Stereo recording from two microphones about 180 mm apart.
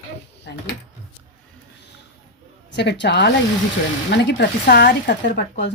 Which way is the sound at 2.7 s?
70° left (ahead or behind).